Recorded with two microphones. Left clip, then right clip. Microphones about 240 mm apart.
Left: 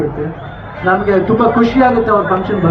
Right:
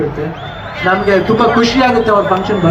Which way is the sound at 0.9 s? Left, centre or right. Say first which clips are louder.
Right 1 dB; centre.